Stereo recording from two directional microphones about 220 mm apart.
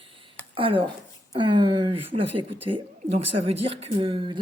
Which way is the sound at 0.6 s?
25° right (ahead or behind).